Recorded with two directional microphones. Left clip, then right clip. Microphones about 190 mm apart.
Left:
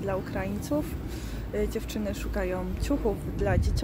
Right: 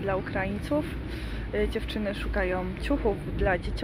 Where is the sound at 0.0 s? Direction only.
10° left (ahead or behind).